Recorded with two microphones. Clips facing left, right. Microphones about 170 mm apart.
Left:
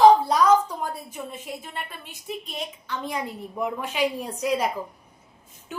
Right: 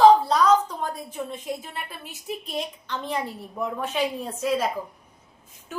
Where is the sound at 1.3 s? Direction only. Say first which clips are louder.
Right 3 dB; centre (ahead or behind); by 4.7 s 15° left (ahead or behind).